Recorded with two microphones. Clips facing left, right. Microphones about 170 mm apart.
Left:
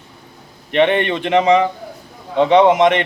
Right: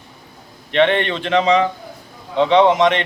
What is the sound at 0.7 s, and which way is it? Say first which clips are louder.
A man's voice: left 1 dB; 15° left (ahead or behind).